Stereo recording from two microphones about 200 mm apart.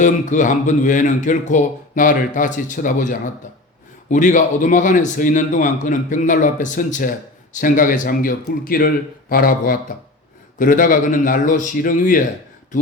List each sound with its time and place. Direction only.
0.0 s speech: 40° left (ahead or behind)